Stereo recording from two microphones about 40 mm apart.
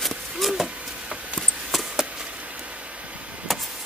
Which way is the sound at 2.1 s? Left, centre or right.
Right.